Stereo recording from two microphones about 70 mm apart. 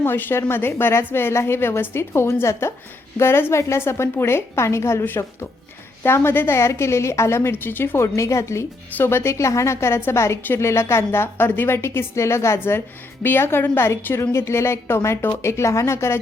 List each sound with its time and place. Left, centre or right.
0.0 s a woman's voice: left
12.5 s a woman's voice: left